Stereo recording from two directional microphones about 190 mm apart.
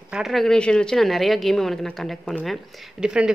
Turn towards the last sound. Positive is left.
turn(degrees=-5)  # may be behind; listen again after turning